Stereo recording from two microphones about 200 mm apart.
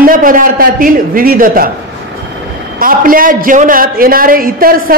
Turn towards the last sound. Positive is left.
turn(degrees=-45)  # may be behind; listen again after turning